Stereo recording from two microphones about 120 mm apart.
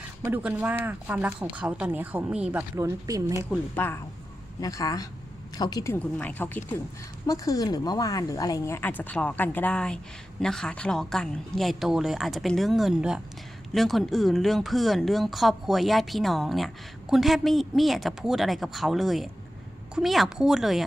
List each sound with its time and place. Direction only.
0.3 s speech: 15° right (ahead or behind)
2.7 s speech: 25° right (ahead or behind)
3.8 s speech: 15° left (ahead or behind)
4.6 s a woman's voice: 30° left (ahead or behind)
5.9 s speech: 15° left (ahead or behind)
7.3 s a woman's voice: 30° left (ahead or behind); by 20.8 s centre (ahead or behind)